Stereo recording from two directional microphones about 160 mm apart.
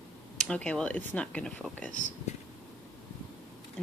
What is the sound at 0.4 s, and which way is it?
Speech, 5° left (ahead or behind).